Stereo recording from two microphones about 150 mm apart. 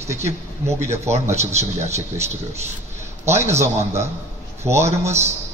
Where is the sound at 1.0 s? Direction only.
45° right (ahead or behind).